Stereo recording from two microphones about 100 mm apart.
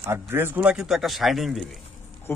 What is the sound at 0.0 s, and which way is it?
Speech, 25° right (ahead or behind).